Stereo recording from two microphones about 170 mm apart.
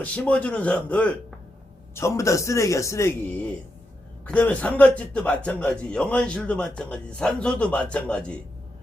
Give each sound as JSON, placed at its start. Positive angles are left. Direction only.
{"t": 0.0, "sound": "a man's voice", "side_deg": 10}